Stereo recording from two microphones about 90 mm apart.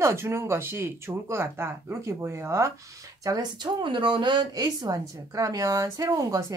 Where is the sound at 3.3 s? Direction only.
45° right (ahead or behind).